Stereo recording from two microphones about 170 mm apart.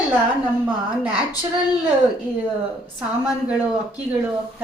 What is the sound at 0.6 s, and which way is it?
Speech, 5° right (ahead or behind).